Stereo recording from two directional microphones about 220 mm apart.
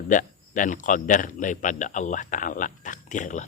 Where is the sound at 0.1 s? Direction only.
35° left (ahead or behind).